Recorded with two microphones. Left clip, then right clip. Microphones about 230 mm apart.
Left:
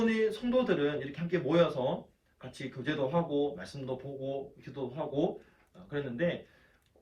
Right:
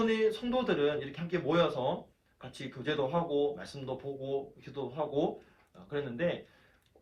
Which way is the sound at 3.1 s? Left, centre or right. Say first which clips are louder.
Even; centre.